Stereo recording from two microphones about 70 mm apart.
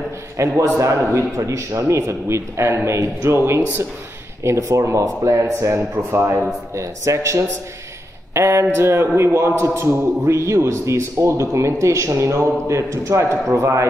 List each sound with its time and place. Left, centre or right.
0.4 s a man's voice: right